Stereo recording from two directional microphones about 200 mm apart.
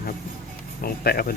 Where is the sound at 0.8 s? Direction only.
50° left (ahead or behind).